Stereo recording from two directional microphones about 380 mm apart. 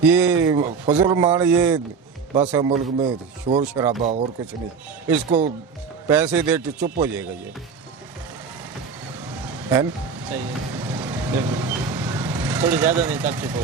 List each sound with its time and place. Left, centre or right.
0.0 s speech: centre
4.0 s speech: centre
6.1 s speech: centre
9.4 s vehicle: centre